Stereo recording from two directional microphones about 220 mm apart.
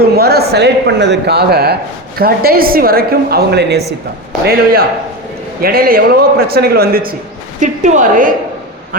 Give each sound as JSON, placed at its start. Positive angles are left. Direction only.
{"t": 0.2, "sound": "speech", "side_deg": -45}
{"t": 7.6, "sound": "a woman's voice", "side_deg": -35}